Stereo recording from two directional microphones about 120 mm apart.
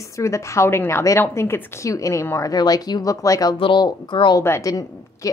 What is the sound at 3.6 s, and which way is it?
Speech, 40° left (ahead or behind).